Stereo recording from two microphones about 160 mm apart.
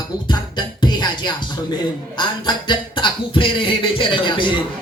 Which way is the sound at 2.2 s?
30° left (ahead or behind).